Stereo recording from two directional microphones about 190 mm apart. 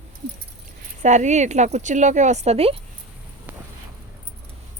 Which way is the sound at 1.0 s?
40° right (ahead or behind).